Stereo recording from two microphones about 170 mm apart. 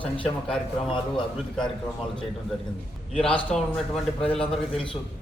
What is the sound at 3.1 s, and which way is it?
A man's voice, 5° left (ahead or behind).